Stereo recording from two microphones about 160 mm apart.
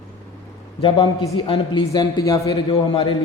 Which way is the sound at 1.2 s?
30° left (ahead or behind).